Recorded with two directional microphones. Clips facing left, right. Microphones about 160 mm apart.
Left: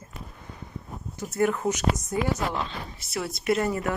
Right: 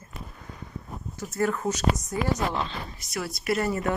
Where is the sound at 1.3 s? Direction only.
20° left (ahead or behind).